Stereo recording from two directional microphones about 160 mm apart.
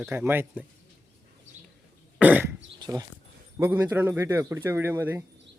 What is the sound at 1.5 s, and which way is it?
Bird, 50° right (ahead or behind).